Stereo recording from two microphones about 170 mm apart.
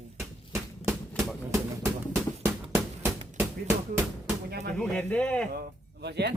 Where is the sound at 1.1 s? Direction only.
Centre (ahead or behind).